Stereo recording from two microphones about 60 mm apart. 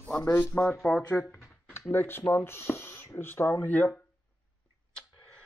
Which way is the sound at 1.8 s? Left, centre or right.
Left.